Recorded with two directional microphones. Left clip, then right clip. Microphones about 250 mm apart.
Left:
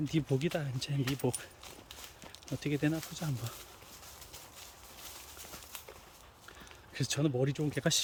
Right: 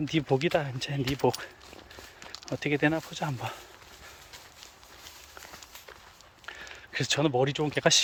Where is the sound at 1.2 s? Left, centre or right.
Right.